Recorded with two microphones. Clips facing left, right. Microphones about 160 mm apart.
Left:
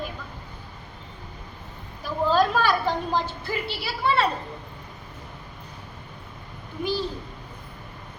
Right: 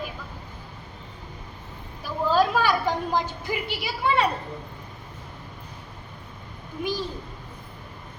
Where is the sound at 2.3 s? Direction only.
10° right (ahead or behind).